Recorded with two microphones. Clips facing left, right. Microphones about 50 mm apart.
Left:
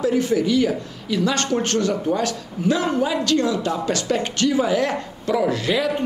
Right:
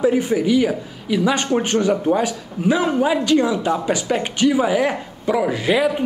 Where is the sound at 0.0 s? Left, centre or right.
Centre.